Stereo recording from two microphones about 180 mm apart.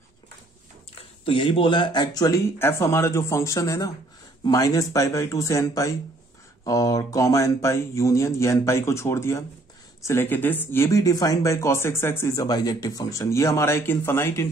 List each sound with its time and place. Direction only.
0.9 s speech: 30° left (ahead or behind); by 14.5 s 15° left (ahead or behind)